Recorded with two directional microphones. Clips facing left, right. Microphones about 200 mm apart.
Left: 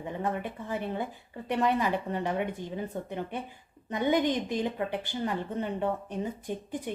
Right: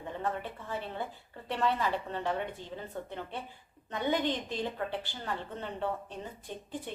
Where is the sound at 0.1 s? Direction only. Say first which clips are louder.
Left 3 dB; 15° left (ahead or behind).